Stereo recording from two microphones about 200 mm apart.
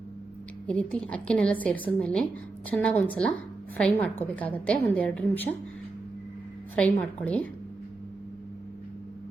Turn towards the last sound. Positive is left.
turn(degrees=5)  # may be behind; listen again after turning